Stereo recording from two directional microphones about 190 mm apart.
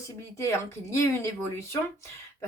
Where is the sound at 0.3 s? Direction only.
15° left (ahead or behind).